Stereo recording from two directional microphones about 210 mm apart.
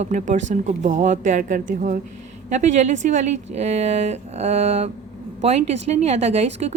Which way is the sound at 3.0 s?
35° right (ahead or behind).